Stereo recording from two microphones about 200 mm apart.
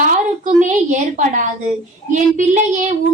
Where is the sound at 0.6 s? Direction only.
35° right (ahead or behind).